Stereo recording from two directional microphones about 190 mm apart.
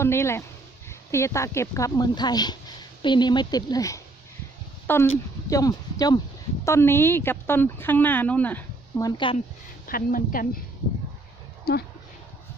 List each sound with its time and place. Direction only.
0.0 s speech: 15° left (ahead or behind)
9.0 s speech: 25° left (ahead or behind)
9.8 s a woman's voice: 50° left (ahead or behind)
11.7 s speech: 55° left (ahead or behind)